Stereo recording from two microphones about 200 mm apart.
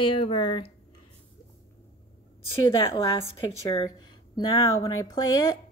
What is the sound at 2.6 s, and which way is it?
A woman's voice, 25° left (ahead or behind).